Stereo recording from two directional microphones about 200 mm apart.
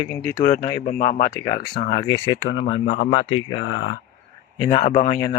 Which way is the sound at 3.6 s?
80° left.